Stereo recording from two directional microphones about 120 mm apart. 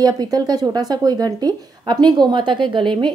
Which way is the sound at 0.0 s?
30° right (ahead or behind).